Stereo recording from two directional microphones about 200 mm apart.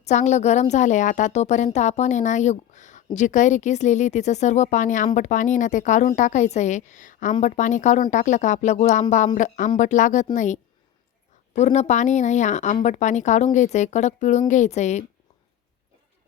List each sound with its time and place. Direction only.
0.0 s a woman's voice: 35° left (ahead or behind)